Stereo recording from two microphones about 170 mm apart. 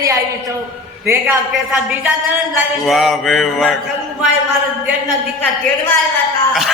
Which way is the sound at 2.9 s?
Centre (ahead or behind).